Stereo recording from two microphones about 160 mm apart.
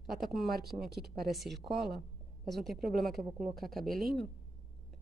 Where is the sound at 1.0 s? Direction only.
75° right (ahead or behind).